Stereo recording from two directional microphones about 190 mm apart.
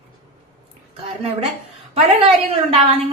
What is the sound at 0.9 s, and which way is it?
Speech, 30° right (ahead or behind).